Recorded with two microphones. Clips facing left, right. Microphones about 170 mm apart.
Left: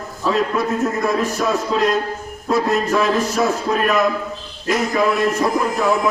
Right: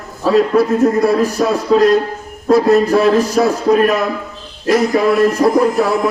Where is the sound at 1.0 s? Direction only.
35° right (ahead or behind).